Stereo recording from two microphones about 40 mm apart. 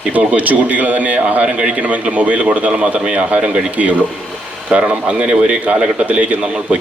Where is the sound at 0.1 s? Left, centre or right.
Right.